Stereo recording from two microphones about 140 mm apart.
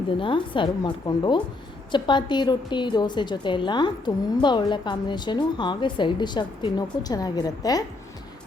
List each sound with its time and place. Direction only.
0.2 s a woman's voice: 35° left (ahead or behind)